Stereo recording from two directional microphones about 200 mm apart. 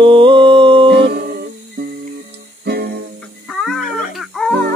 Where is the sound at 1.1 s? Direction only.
50° right (ahead or behind).